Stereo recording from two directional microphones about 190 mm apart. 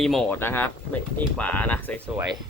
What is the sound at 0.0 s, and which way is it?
Speech, centre (ahead or behind).